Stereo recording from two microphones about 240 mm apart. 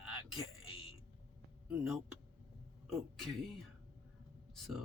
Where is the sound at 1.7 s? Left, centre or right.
Centre.